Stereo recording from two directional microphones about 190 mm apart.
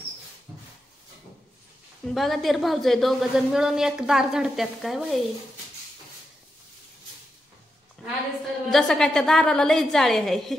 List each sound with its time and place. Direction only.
2.0 s a woman's voice: centre (ahead or behind)
8.6 s a woman's voice: centre (ahead or behind)